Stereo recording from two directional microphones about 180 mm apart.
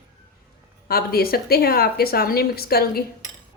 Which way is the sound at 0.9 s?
60° left (ahead or behind).